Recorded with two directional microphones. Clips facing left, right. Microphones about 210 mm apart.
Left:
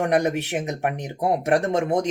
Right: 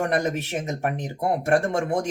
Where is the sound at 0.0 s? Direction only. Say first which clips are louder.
Left 3 dB; 15° left (ahead or behind).